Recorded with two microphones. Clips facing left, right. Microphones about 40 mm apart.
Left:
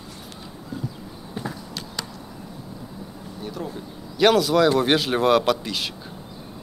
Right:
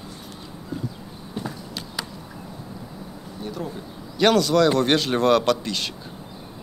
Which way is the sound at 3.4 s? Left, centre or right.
Centre.